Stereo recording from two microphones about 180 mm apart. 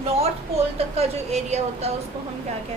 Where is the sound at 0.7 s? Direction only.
35° right (ahead or behind).